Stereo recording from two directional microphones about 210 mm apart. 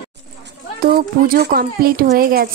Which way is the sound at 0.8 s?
45° right (ahead or behind).